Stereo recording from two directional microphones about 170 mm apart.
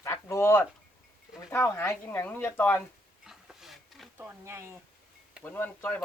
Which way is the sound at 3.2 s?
Centre (ahead or behind).